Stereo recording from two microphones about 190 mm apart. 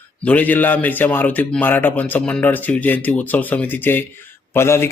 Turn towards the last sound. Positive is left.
turn(degrees=15)  # may be behind; listen again after turning